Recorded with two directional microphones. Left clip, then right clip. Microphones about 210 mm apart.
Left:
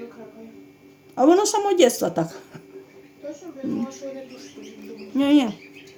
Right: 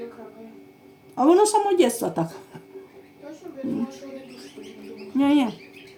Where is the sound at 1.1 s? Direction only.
25° left (ahead or behind).